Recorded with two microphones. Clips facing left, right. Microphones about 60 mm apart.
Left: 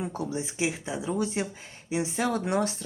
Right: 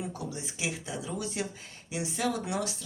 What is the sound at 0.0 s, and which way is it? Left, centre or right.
Speech, left.